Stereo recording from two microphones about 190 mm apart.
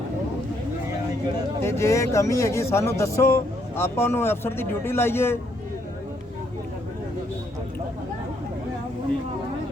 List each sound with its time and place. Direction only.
1.6 s speech: 15° left (ahead or behind)